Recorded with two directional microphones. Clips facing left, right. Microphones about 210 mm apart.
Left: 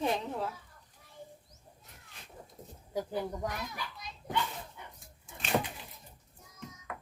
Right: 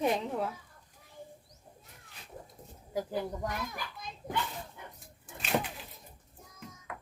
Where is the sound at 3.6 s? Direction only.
50° right (ahead or behind).